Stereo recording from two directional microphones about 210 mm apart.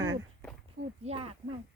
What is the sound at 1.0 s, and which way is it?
Speech, 25° right (ahead or behind).